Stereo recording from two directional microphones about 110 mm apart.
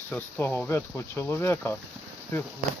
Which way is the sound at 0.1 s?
15° left (ahead or behind).